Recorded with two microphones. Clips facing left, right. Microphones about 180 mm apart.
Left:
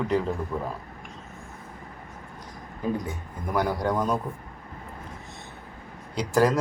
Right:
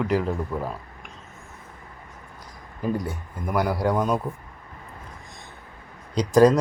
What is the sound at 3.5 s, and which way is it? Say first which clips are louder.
Speech: right 2 dB; 10° right (ahead or behind).